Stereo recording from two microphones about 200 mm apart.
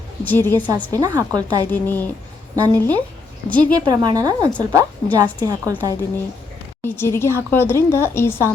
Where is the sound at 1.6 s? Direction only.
10° left (ahead or behind).